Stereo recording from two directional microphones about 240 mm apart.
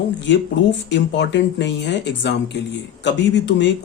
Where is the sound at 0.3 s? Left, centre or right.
Left.